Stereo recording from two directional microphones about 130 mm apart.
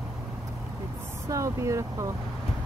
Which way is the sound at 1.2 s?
25° right (ahead or behind).